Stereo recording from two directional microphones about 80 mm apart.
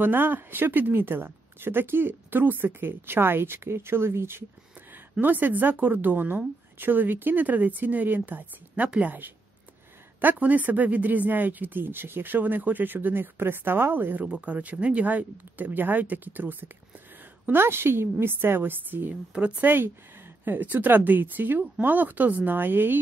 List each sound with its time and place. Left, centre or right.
0.0 s speech: right
19.3 s speech: centre
19.7 s speech: right